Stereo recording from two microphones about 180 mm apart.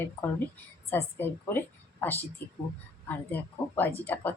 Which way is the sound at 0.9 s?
10° left (ahead or behind).